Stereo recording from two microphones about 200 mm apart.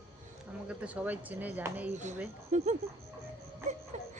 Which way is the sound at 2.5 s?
35° right (ahead or behind).